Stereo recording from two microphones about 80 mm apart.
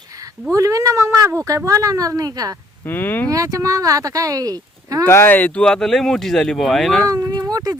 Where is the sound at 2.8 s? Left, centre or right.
Left.